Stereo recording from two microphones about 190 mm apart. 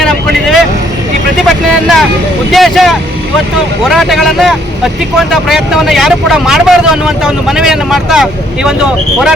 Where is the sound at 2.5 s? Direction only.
Centre (ahead or behind).